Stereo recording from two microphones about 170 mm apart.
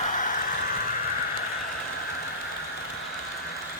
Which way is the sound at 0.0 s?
50° left (ahead or behind).